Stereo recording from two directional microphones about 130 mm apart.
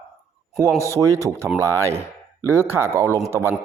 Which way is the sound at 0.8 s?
25° right (ahead or behind).